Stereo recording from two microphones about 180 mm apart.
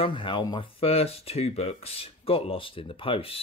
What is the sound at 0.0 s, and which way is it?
Speech, 25° left (ahead or behind).